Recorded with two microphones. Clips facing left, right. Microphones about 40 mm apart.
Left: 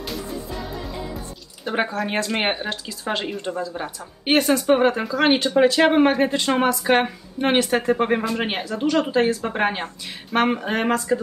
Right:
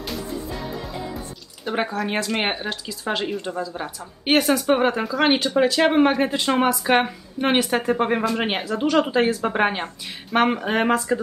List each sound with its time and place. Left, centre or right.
1.6 s speech: centre
5.6 s speech: centre
8.8 s speech: centre